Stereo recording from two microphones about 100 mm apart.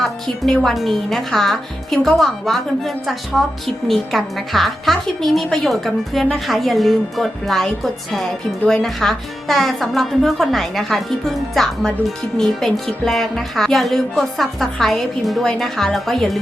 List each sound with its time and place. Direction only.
0.0 s speech: 5° left (ahead or behind)